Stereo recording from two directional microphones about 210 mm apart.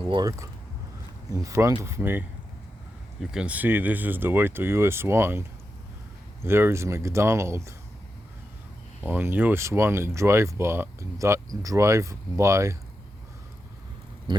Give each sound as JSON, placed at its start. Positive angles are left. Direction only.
{"t": 0.0, "sound": "speech", "side_deg": -20}
{"t": 9.0, "sound": "speech", "side_deg": -10}